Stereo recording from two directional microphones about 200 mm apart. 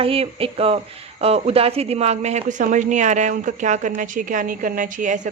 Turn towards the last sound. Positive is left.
turn(degrees=-40)  # may be behind; listen again after turning